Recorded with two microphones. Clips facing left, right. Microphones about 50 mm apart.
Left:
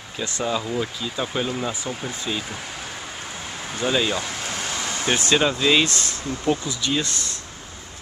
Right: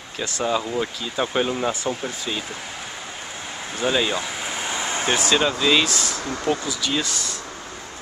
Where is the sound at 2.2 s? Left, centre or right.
Centre; by 5.2 s right.